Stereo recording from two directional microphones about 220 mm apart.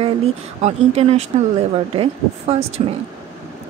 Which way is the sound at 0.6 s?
30° right (ahead or behind).